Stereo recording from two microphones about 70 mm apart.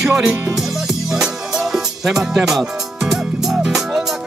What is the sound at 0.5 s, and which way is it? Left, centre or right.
Music, centre.